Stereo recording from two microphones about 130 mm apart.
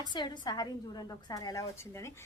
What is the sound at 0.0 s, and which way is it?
A woman's voice, 35° left (ahead or behind).